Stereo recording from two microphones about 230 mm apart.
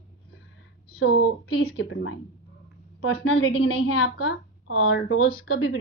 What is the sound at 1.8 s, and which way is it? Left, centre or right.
Speech, left.